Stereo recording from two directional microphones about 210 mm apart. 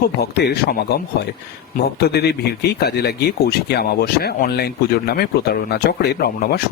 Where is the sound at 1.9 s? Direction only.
50° left (ahead or behind).